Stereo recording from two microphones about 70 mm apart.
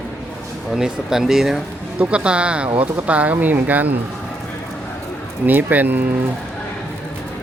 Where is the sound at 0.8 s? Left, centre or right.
Centre.